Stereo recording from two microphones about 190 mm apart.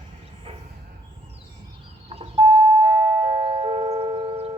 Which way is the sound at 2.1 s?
30° right (ahead or behind).